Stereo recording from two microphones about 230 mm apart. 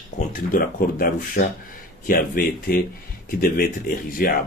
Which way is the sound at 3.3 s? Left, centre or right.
Left.